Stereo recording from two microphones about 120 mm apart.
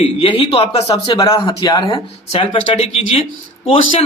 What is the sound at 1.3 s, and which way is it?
Speech, 45° left (ahead or behind).